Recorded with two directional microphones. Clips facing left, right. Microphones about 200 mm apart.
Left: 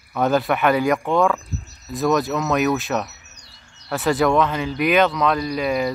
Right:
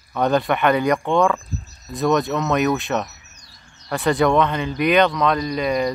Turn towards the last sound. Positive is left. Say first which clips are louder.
# right 1 dB
turn(degrees=5)  # may be behind; listen again after turning